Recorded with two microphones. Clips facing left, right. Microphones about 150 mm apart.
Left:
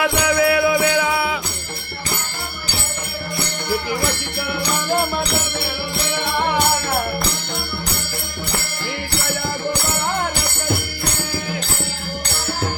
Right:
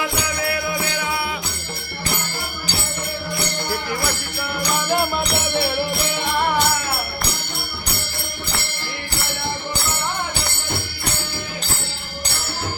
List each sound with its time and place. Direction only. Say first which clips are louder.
0.0 s music: left 7 dB; 90° left